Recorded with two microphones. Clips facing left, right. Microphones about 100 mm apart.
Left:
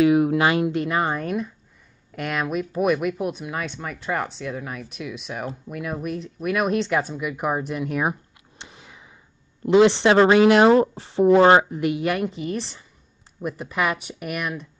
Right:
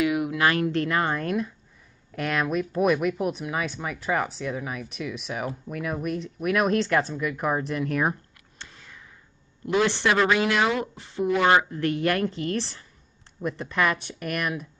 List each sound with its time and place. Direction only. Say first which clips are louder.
0.0 s a sound: left 6 dB; 30° left (ahead or behind)
0.5 s speech: left 2 dB; 15° left (ahead or behind); by 11.6 s 30° left (ahead or behind)
11.7 s speech: left 1 dB; 10° left (ahead or behind)